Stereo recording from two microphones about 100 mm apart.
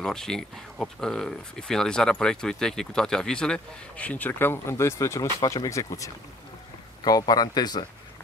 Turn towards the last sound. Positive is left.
turn(degrees=45)  # may be behind; listen again after turning